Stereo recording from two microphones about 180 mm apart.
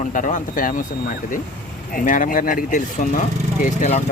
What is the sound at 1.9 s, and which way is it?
Speech, 50° left (ahead or behind).